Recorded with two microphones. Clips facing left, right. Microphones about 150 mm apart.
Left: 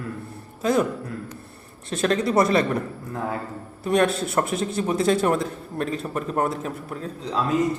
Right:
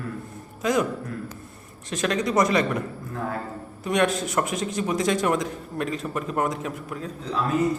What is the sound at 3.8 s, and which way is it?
A man's voice, 35° left (ahead or behind).